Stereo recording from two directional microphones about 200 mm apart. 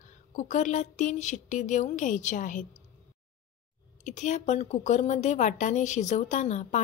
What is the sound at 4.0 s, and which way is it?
A woman's voice, 35° left (ahead or behind).